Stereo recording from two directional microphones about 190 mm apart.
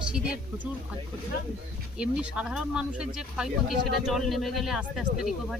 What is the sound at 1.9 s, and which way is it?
Speech, 5° right (ahead or behind).